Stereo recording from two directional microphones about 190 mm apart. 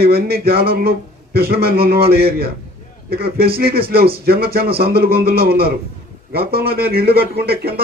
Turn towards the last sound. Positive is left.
turn(degrees=-55)  # may be behind; listen again after turning